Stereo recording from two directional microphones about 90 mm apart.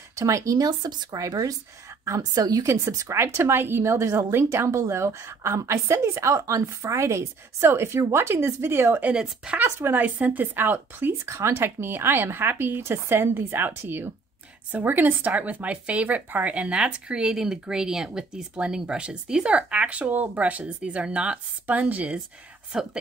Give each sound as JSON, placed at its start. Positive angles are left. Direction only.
{"t": 0.1, "sound": "speech", "side_deg": -35}
{"t": 2.6, "sound": "a woman's voice", "side_deg": -35}
{"t": 9.0, "sound": "a woman's voice", "side_deg": -10}
{"t": 9.6, "sound": "a woman's voice", "side_deg": -25}